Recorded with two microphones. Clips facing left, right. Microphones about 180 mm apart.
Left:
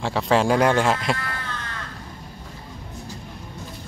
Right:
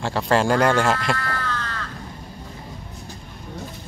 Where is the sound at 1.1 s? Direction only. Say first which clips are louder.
Right 4 dB; 20° left (ahead or behind).